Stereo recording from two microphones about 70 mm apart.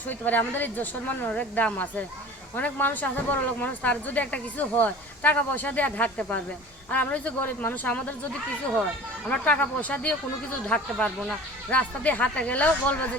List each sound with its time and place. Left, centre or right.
0.1 s speech: left
9.4 s speech: left
10.7 s speech: centre
11.7 s speech: left